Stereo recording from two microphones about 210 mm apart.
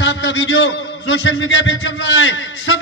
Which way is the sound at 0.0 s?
60° left (ahead or behind).